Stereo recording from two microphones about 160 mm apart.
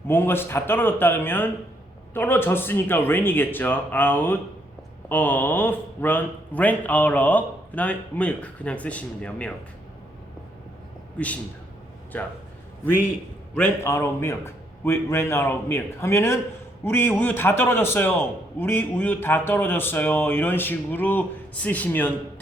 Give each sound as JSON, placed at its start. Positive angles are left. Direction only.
{"t": 0.1, "sound": "a man's voice", "side_deg": 15}
{"t": 12.1, "sound": "a man's voice", "side_deg": 10}
{"t": 13.5, "sound": "a man's voice", "side_deg": 10}